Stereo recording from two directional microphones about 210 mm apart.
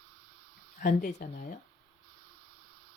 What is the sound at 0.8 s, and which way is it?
Speech, 35° left (ahead or behind).